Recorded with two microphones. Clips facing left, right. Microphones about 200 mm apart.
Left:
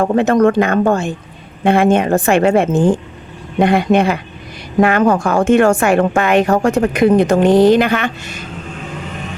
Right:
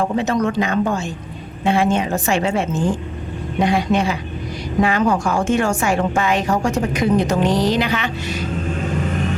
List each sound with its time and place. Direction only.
0.0 s speech: 55° left (ahead or behind)